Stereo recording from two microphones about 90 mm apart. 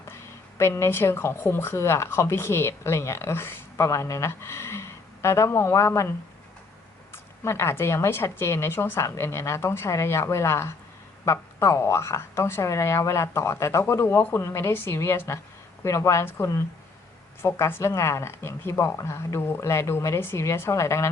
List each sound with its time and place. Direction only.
0.6 s a woman's voice: 25° left (ahead or behind)
7.1 s a woman's voice: 30° left (ahead or behind)